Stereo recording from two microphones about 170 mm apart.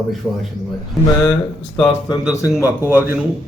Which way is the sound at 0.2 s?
10° right (ahead or behind).